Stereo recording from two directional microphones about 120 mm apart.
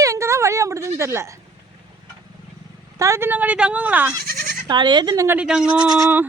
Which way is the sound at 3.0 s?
25° right (ahead or behind).